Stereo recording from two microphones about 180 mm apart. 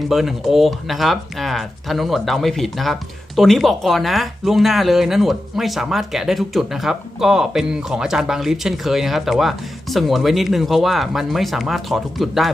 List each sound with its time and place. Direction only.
0.1 s speech: centre (ahead or behind)